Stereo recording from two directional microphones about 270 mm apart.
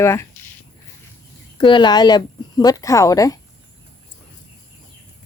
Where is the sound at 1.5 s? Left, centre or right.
Centre.